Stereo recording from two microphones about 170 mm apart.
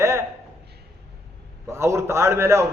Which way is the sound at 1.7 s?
15° right (ahead or behind).